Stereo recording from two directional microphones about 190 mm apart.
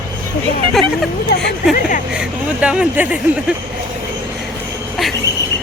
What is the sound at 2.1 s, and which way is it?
A woman's voice, 5° right (ahead or behind).